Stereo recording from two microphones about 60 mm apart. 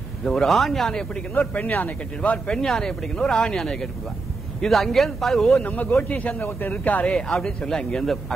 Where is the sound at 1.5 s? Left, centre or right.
Left.